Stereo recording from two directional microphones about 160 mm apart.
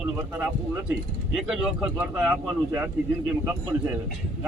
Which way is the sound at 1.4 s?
5° right (ahead or behind).